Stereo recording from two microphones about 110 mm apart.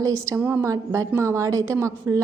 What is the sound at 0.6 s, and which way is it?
A woman's voice, 25° right (ahead or behind).